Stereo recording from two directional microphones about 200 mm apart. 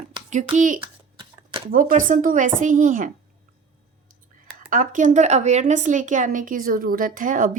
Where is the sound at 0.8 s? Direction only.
25° right (ahead or behind).